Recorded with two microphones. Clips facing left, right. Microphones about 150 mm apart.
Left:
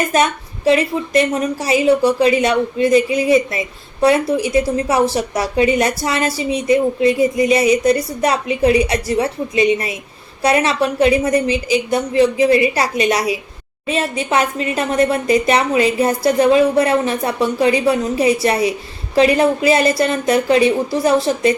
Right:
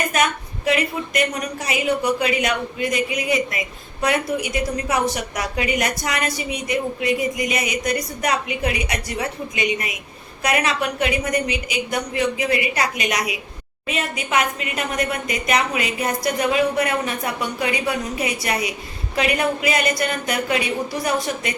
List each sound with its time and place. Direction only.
0.1 s a woman's voice: 30° left (ahead or behind)